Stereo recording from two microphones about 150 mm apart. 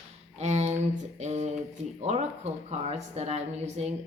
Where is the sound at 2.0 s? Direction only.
50° right (ahead or behind).